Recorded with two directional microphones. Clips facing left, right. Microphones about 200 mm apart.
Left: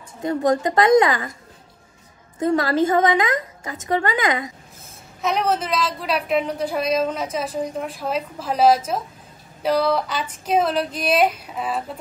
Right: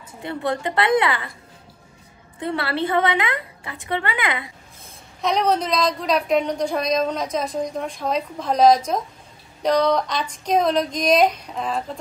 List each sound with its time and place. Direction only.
0.2 s a woman's voice: 40° left (ahead or behind)
2.3 s a woman's voice: 40° left (ahead or behind)
5.2 s a woman's voice: 5° left (ahead or behind)
9.6 s a sound: 5° left (ahead or behind)